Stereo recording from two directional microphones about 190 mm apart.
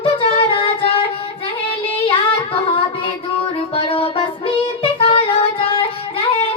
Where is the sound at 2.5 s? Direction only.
30° left (ahead or behind).